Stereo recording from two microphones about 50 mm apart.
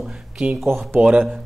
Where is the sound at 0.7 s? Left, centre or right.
Right.